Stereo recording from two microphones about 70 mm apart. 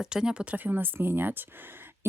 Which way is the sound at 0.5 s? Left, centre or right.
Right.